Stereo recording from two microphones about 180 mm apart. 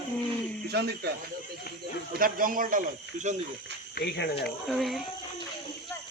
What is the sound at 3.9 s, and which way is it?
Speech, 70° left (ahead or behind).